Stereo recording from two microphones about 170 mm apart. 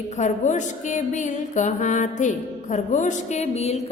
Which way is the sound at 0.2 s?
45° left (ahead or behind).